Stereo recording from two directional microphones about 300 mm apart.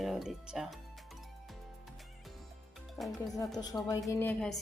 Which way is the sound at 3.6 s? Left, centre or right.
Centre.